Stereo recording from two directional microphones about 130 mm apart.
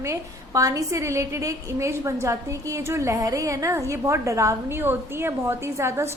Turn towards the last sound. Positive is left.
turn(degrees=-20)  # may be behind; listen again after turning